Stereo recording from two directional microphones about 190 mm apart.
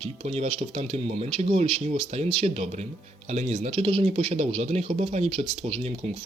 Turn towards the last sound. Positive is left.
turn(degrees=-35)  # may be behind; listen again after turning